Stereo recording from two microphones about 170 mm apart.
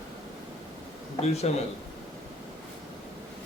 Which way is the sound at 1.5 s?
40° left (ahead or behind).